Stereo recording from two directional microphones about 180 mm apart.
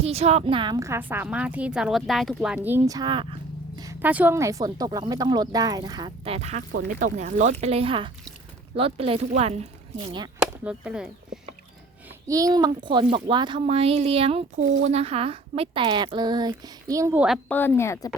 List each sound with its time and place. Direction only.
0.0 s a woman's voice: 35° right (ahead or behind); by 2.6 s centre (ahead or behind)
2.6 s a child's voice: 15° right (ahead or behind)
4.0 s a child's voice: 10° right (ahead or behind); by 10.2 s 30° right (ahead or behind)
10.4 s speech: 5° right (ahead or behind)
12.3 s a child's voice: 20° right (ahead or behind)
17.5 s speech: 10° left (ahead or behind)